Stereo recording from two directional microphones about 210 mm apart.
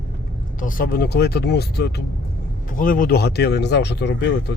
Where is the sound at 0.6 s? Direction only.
40° left (ahead or behind).